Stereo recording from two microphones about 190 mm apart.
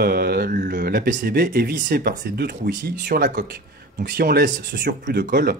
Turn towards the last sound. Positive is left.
turn(degrees=-55)  # may be behind; listen again after turning